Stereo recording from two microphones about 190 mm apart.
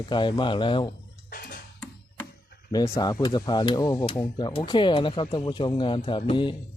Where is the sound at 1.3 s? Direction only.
50° left (ahead or behind).